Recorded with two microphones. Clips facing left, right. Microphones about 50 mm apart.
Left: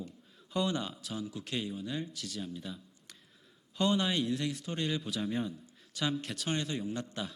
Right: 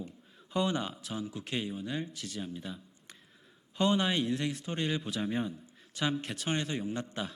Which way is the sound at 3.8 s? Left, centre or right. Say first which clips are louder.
Right 2 dB; right.